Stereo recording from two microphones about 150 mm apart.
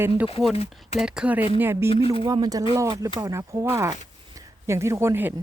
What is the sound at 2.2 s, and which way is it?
Speech, 25° right (ahead or behind).